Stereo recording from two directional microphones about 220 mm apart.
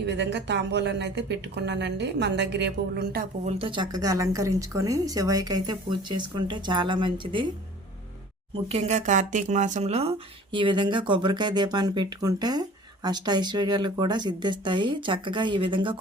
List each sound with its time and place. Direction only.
0.0 s speech: 50° right (ahead or behind)
3.4 s speech: 25° right (ahead or behind)
8.7 s speech: 30° right (ahead or behind)